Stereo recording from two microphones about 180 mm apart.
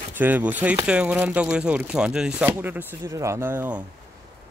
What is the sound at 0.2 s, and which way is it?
Speech, 10° right (ahead or behind).